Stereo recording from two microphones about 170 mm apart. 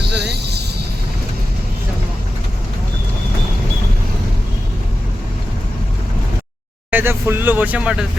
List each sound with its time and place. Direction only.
0.0 s music: 80° right
6.9 s speech: 15° right (ahead or behind)